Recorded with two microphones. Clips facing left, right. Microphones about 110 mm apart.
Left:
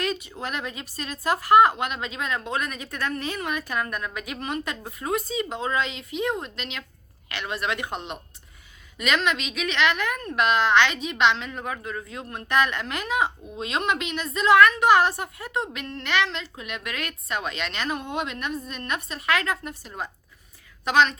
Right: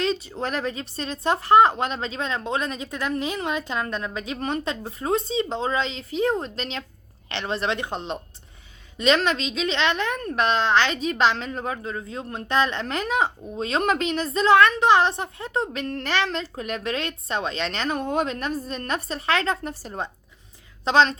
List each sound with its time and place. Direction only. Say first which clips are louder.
0.0 s a woman's voice: right 4 dB; 30° right (ahead or behind)